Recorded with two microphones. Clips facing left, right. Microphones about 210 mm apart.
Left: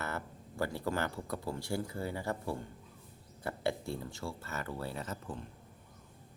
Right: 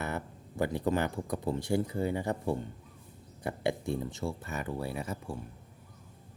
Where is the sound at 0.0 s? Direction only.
20° right (ahead or behind).